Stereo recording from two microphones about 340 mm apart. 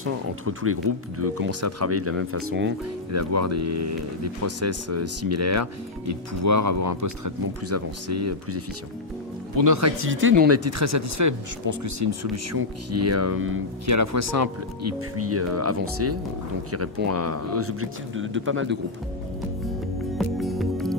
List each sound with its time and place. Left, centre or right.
0.0 s speech: right
2.8 s speech: right
9.6 s speech: right
10.0 s speech: right
10.5 s speech: right
13.8 s speech: right
20.1 s music: centre